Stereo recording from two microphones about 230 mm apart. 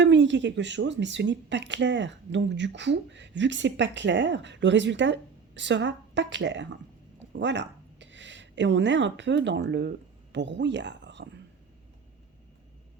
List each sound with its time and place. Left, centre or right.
0.0 s speech: right